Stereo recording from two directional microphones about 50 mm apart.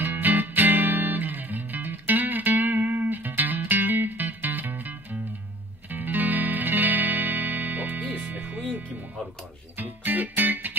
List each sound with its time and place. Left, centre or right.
0.0 s music: right
9.8 s music: right